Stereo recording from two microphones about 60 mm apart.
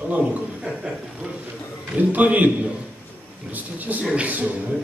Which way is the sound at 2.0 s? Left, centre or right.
Right.